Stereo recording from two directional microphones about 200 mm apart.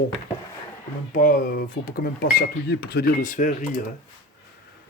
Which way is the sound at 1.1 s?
40° left (ahead or behind).